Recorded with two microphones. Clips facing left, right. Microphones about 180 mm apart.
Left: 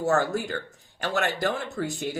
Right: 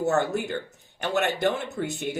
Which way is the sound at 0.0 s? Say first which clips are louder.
Even; 20° right (ahead or behind).